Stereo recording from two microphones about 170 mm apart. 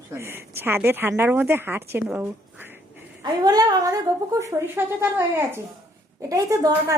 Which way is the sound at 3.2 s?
25° right (ahead or behind).